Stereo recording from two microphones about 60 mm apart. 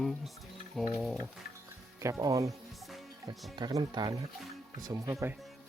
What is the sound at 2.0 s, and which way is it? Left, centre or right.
Speech, right.